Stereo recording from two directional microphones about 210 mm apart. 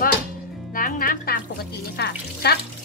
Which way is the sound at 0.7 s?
40° left (ahead or behind).